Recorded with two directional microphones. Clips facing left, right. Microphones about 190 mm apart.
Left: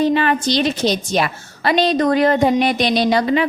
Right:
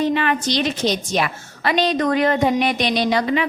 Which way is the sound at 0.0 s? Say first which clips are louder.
Left 3 dB; 35° left (ahead or behind).